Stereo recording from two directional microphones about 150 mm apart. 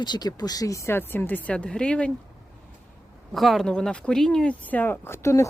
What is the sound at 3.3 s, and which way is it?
Speech, centre (ahead or behind).